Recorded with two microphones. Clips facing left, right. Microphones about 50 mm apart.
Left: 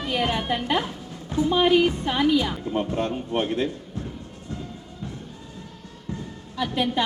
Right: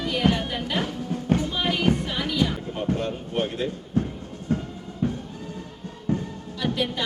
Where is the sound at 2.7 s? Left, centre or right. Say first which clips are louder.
Left 2 dB; left.